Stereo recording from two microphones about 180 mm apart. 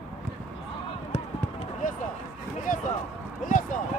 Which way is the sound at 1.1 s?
35° left (ahead or behind).